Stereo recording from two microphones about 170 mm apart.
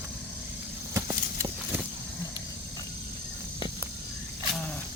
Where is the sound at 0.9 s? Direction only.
15° right (ahead or behind).